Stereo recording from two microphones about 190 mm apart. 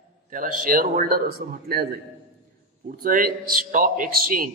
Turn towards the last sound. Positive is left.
turn(degrees=-45)  # may be behind; listen again after turning